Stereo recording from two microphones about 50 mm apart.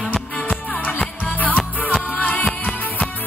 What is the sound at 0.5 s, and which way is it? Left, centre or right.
Music, left.